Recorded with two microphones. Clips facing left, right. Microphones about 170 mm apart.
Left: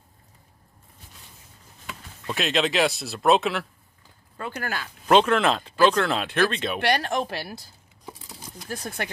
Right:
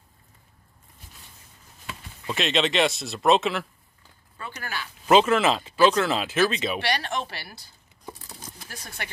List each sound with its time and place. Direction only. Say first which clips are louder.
2.2 s speech: even; centre (ahead or behind)
4.4 s speech: left 4 dB; 50° left (ahead or behind)
5.0 s speech: even; 5° right (ahead or behind)
6.8 s speech: left 4 dB; 50° left (ahead or behind)
8.0 s crumpling: even; 10° left (ahead or behind)
8.8 s speech: left 6 dB; 50° left (ahead or behind)